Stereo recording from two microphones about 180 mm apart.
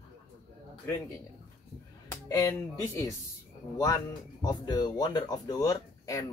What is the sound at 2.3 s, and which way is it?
Speech, 20° left (ahead or behind).